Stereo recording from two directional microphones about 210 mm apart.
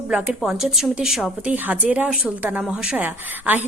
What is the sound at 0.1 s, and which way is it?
A woman's voice, 5° right (ahead or behind).